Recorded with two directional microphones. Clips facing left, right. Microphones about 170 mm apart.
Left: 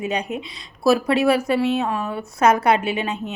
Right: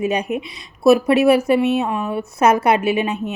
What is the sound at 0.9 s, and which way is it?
Speech, 20° right (ahead or behind).